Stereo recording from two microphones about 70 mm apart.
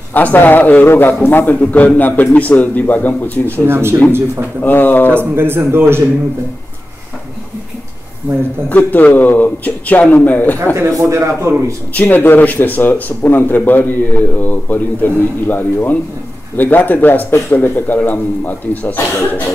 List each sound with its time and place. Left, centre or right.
0.1 s a man's voice: left
3.6 s a man's voice: right
4.6 s a man's voice: left
5.1 s a man's voice: right
8.2 s speech: right
8.6 s a man's voice: left
10.7 s a man's voice: right
11.9 s a man's voice: left